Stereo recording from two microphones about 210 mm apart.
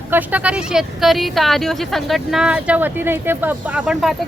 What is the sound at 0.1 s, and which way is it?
Speech, 10° right (ahead or behind).